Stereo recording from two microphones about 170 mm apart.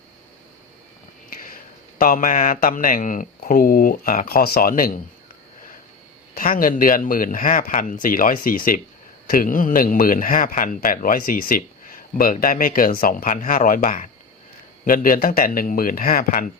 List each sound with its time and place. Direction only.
2.0 s speech: 55° left (ahead or behind)
6.3 s speech: 55° left (ahead or behind)